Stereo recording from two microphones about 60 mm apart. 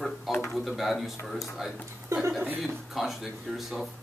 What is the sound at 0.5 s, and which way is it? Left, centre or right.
Speech, centre.